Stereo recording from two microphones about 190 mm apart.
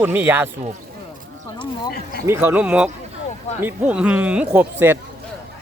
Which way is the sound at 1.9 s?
55° left (ahead or behind).